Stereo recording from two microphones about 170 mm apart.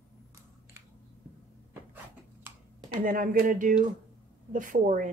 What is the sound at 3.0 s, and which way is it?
A woman's voice, 55° right (ahead or behind).